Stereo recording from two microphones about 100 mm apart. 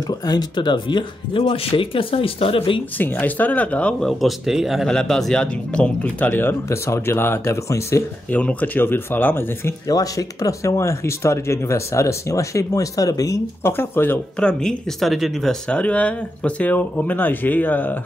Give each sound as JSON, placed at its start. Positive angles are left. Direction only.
{"t": 0.2, "sound": "speech", "side_deg": 40}
{"t": 3.0, "sound": "speech", "side_deg": 15}
{"t": 4.2, "sound": "speech", "side_deg": 0}
{"t": 8.3, "sound": "speech", "side_deg": 15}
{"t": 9.8, "sound": "speech", "side_deg": 35}
{"t": 13.7, "sound": "speech", "side_deg": 20}
{"t": 14.4, "sound": "speech", "side_deg": 5}
{"t": 15.7, "sound": "speech", "side_deg": 10}